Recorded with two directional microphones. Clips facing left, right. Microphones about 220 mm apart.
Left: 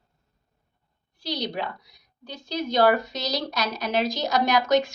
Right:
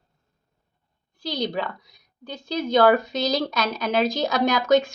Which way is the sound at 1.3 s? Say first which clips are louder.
Right 3 dB; 50° right (ahead or behind).